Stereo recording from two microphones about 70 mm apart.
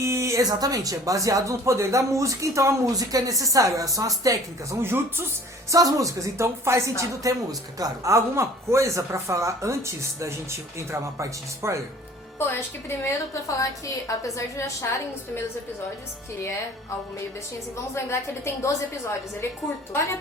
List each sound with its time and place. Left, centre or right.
0.0 s a sound: right
0.4 s speech: right
4.8 s speech: right
5.7 s speech: right
12.4 s a woman's voice: left
13.6 s a woman's voice: left
17.9 s a woman's voice: left